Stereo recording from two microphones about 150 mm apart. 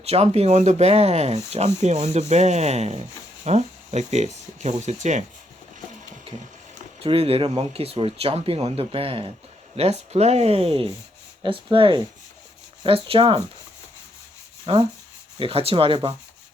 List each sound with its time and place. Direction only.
0.0 s speech: 45° right (ahead or behind)
7.0 s speech: 40° right (ahead or behind)
14.7 s speech: 40° right (ahead or behind)